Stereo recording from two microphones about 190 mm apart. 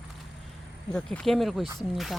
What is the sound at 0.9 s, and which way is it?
Speech, 5° left (ahead or behind).